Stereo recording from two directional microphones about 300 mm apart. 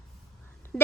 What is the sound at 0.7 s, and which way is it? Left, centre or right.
Speech, centre.